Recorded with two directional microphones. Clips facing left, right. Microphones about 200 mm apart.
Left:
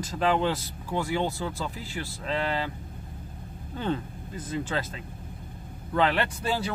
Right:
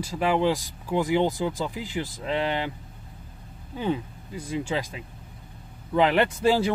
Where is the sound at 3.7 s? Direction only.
10° right (ahead or behind).